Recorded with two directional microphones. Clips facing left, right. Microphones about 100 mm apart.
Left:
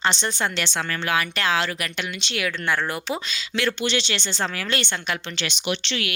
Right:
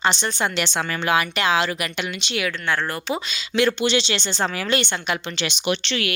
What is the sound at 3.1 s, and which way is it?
A woman's voice, 15° right (ahead or behind).